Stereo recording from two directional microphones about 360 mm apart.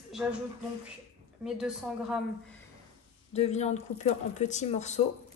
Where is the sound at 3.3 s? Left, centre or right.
Centre.